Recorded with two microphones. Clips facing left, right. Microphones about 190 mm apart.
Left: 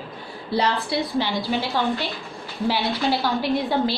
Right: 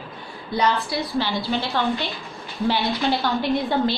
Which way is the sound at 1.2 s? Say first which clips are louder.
Right 3 dB; 15° left (ahead or behind).